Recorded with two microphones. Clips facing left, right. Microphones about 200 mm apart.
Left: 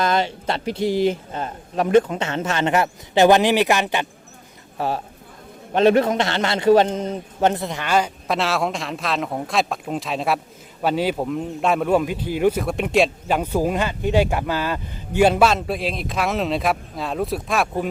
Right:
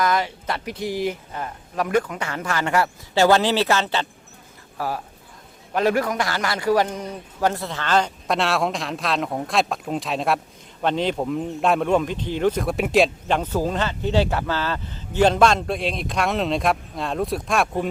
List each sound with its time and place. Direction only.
0.0 s a man's voice: 25° left (ahead or behind)
4.8 s a man's voice: 25° left (ahead or behind); by 17.8 s centre (ahead or behind)